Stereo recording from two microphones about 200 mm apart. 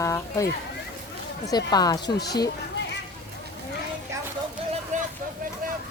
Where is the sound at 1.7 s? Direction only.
20° left (ahead or behind).